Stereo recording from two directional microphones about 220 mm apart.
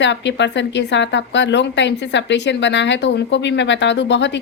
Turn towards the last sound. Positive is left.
turn(degrees=55)  # may be behind; listen again after turning